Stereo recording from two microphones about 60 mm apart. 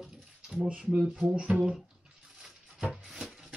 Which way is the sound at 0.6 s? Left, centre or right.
Right.